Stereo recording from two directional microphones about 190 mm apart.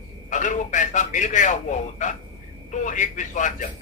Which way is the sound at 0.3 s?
40° left (ahead or behind).